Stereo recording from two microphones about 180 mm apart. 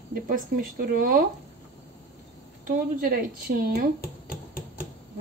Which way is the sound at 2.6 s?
50° right (ahead or behind).